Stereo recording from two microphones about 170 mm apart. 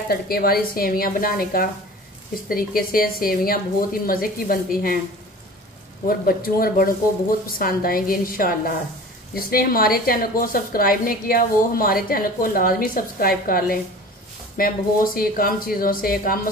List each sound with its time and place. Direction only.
0.1 s a woman's voice: 60° left (ahead or behind)
6.0 s a woman's voice: 60° left (ahead or behind)